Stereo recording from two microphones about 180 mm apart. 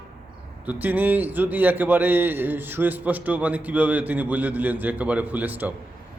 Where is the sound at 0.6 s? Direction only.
10° right (ahead or behind).